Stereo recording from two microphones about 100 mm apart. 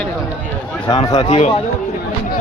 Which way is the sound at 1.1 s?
90° left.